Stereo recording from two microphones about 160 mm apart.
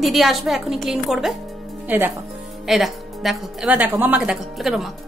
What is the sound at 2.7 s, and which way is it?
A woman's voice, centre (ahead or behind).